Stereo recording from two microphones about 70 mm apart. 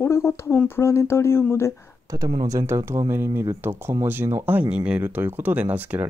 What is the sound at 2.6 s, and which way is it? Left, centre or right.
Speech, right.